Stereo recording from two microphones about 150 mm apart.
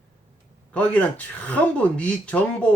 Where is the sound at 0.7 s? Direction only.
10° left (ahead or behind).